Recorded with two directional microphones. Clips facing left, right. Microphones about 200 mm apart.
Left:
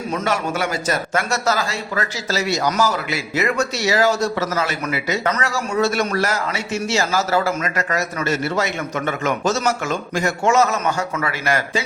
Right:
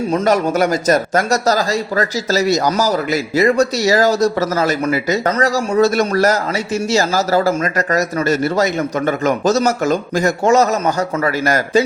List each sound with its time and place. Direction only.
0.1 s a man's voice: 40° right (ahead or behind)